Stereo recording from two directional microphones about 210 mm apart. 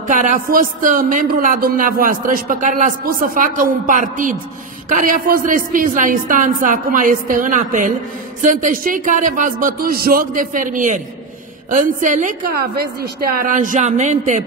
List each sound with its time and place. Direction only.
0.1 s speech: 40° right (ahead or behind)